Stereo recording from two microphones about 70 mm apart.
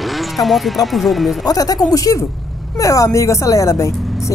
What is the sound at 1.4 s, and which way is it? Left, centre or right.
Speech, left.